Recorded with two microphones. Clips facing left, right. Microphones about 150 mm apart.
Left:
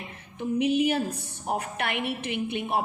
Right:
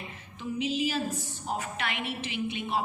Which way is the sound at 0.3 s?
60° left (ahead or behind).